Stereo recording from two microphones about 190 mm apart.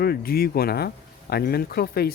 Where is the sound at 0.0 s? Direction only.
55° left (ahead or behind).